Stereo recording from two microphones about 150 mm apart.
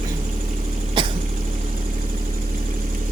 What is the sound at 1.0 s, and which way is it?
Cough, 30° right (ahead or behind).